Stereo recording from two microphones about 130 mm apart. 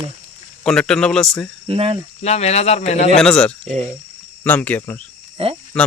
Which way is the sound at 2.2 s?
55° left (ahead or behind).